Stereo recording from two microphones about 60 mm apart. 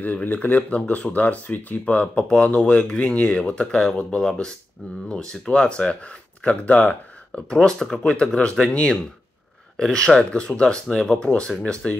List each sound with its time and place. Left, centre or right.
0.0 s speech: left
7.3 s speech: centre